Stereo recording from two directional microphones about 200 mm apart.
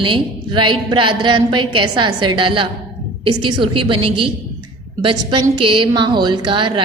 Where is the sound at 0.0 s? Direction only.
25° right (ahead or behind).